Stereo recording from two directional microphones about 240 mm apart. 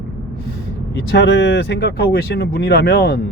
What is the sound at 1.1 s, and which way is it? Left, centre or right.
Speech, left.